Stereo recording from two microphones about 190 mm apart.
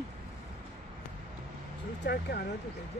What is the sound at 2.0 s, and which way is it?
Speech, 55° left (ahead or behind).